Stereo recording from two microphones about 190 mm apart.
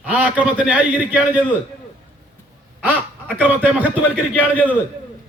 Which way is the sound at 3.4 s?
10° right (ahead or behind).